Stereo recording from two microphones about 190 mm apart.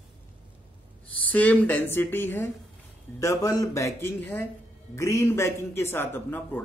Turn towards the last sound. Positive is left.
turn(degrees=10)  # may be behind; listen again after turning